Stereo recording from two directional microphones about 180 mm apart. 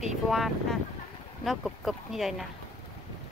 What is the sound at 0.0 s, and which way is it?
Speech, centre (ahead or behind).